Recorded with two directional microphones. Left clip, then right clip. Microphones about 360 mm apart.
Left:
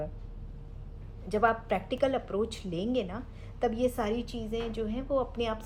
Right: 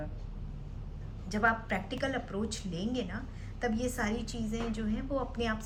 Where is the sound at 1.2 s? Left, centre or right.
Centre.